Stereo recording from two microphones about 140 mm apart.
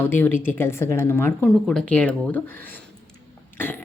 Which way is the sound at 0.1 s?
15° left (ahead or behind).